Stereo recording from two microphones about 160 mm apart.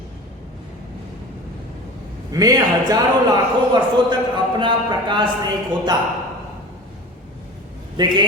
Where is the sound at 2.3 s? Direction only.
20° right (ahead or behind).